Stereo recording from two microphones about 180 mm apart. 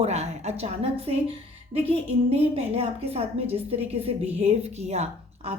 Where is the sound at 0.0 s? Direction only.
35° right (ahead or behind).